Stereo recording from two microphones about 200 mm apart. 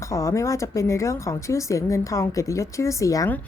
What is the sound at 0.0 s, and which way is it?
Speech, 15° left (ahead or behind).